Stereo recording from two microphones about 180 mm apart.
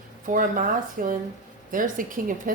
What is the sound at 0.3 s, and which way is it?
A woman's voice, 45° right (ahead or behind).